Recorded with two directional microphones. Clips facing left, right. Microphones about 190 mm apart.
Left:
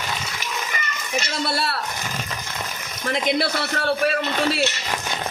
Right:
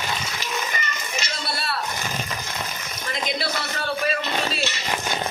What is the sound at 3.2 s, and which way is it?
Speech, 65° left (ahead or behind).